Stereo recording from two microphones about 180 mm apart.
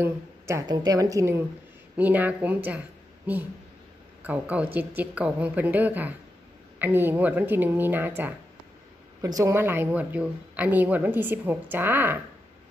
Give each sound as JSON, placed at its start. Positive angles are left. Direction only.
{"t": 0.0, "sound": "a woman's voice", "side_deg": -15}
{"t": 4.2, "sound": "a woman's voice", "side_deg": -10}